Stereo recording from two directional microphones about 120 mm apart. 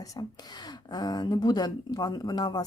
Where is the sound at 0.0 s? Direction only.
30° left (ahead or behind).